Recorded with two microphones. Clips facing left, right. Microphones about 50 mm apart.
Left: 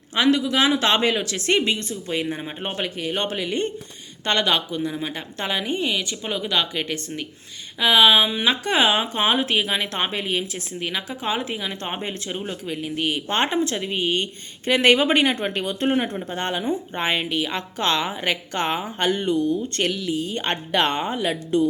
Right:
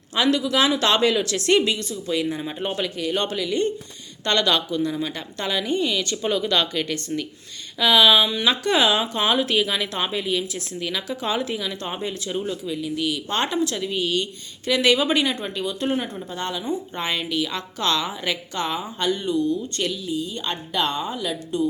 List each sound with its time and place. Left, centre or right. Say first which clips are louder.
0.1 s a woman's voice: left 1 dB; centre
12.6 s speech: even; left
16.6 s speech: left 2 dB; left
19.9 s speech: left 2 dB; left